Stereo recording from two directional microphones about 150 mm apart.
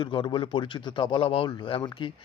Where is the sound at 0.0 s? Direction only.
30° left (ahead or behind).